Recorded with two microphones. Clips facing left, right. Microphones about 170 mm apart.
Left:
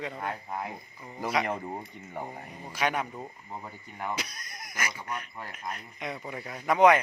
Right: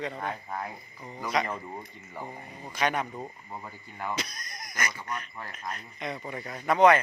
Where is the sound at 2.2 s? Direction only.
55° left (ahead or behind).